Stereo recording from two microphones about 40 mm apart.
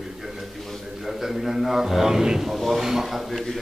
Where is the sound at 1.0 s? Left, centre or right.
Centre.